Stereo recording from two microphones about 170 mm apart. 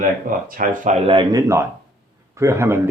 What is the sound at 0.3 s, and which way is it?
Speech, 55° right (ahead or behind).